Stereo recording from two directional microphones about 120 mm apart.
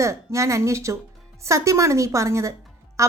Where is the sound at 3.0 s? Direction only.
25° right (ahead or behind).